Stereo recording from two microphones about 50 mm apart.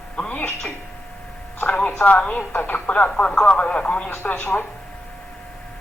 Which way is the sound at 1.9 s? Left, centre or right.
Left.